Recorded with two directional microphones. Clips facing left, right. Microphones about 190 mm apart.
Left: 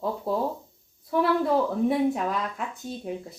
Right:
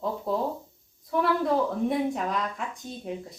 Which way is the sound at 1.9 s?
5° left (ahead or behind).